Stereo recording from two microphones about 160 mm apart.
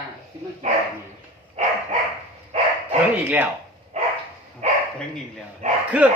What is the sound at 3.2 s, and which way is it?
Speech, 10° right (ahead or behind).